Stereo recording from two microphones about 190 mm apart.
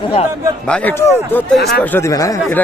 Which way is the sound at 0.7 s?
5° left (ahead or behind).